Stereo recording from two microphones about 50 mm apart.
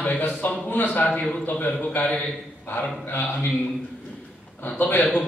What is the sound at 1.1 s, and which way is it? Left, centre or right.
Speech, centre.